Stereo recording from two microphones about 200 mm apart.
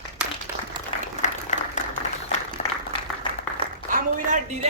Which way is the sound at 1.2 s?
35° left (ahead or behind).